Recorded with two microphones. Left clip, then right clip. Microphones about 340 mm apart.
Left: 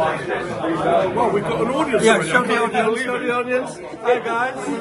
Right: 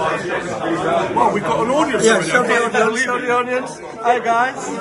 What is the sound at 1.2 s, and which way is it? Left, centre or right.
Speech, centre.